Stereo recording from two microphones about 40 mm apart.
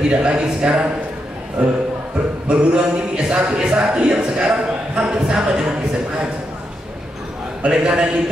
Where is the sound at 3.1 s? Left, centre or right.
Right.